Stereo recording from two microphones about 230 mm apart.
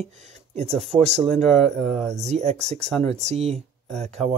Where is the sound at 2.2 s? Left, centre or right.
Right.